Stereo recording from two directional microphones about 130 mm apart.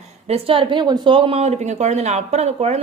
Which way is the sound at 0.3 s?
50° right (ahead or behind).